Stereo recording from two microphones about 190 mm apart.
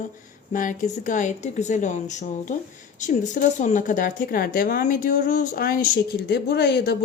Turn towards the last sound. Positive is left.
turn(degrees=60)  # may be behind; listen again after turning